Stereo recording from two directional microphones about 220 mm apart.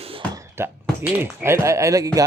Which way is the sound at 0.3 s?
10° right (ahead or behind).